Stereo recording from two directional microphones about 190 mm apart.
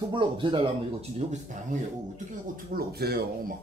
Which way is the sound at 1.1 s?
40° right (ahead or behind).